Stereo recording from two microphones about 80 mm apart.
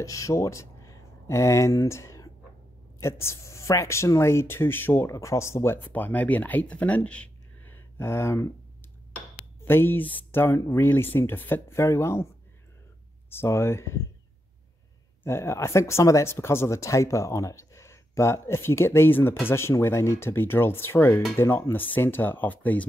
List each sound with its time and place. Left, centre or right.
0.0 s speech: left
13.3 s speech: left
15.2 s speech: left